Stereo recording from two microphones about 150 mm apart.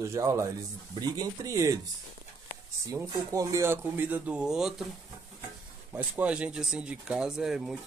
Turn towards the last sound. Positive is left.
turn(degrees=-5)  # may be behind; listen again after turning